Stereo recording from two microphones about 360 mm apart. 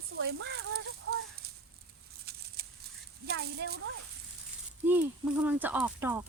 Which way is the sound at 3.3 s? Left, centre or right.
Right.